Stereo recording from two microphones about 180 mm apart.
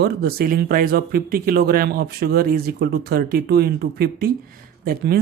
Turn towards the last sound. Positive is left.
turn(degrees=-55)  # may be behind; listen again after turning